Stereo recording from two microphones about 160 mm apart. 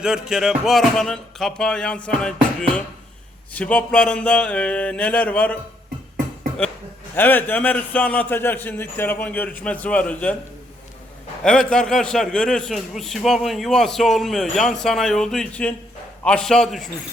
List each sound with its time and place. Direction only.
0.0 s a man's voice: 5° right (ahead or behind)
7.2 s a man's voice: 10° left (ahead or behind)
11.4 s a man's voice: 5° left (ahead or behind)